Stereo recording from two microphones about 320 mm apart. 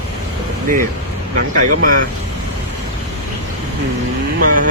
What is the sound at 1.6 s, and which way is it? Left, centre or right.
Speech, right.